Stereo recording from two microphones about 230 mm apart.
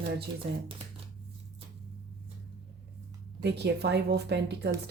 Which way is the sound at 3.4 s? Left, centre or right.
Right.